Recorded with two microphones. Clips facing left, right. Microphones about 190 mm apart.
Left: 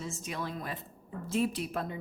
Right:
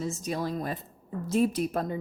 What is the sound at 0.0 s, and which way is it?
A woman's voice, 40° right (ahead or behind).